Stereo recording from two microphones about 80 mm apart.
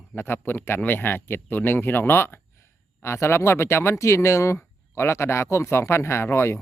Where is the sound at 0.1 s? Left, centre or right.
Left.